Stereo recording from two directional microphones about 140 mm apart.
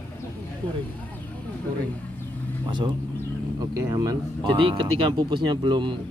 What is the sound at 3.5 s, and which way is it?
Speech, 25° right (ahead or behind).